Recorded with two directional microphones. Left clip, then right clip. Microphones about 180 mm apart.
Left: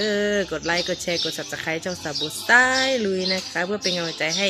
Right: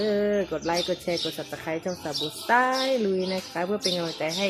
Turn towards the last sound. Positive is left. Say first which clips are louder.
# left 4 dB
turn(degrees=5)  # may be behind; listen again after turning